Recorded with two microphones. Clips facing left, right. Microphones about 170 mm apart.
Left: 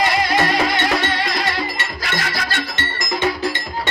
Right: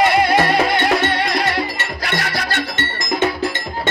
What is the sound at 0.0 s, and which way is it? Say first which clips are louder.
Music: right 4 dB; 60° right (ahead or behind).